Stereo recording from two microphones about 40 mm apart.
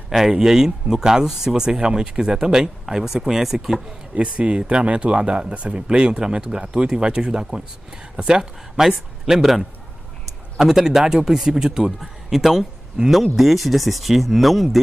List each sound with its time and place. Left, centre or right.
0.3 s speech: centre
4.1 s speech: right; by 13.1 s centre
13.4 s speech: centre